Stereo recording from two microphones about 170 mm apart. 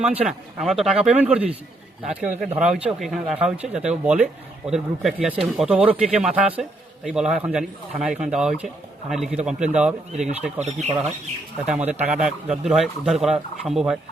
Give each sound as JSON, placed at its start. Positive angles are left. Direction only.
{"t": 0.0, "sound": "speech", "side_deg": -5}
{"t": 10.6, "sound": "speech", "side_deg": -40}
{"t": 11.6, "sound": "speech", "side_deg": -5}